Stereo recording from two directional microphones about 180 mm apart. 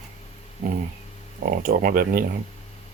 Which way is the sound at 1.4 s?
55° right (ahead or behind).